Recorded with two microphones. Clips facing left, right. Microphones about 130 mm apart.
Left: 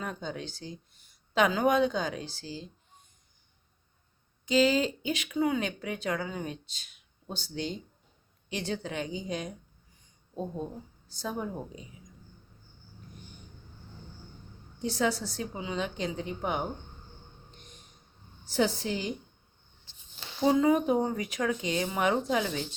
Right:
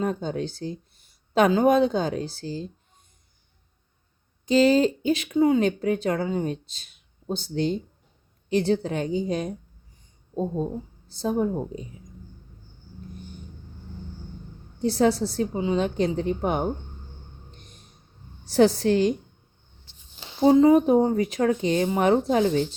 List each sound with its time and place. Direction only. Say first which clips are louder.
0.0 s speech: right 10 dB; 35° right (ahead or behind)
2.4 s speech: right 8 dB; 45° right (ahead or behind)
4.4 s speech: right 6 dB; 35° right (ahead or behind)
14.9 s speech: right 8 dB; 35° right (ahead or behind)
18.5 s a woman's voice: right 10 dB; 70° right (ahead or behind)
20.1 s speech: right 8 dB; 30° right (ahead or behind)